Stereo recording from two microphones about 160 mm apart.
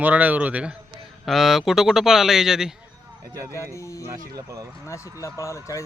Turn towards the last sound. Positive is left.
turn(degrees=20)  # may be behind; listen again after turning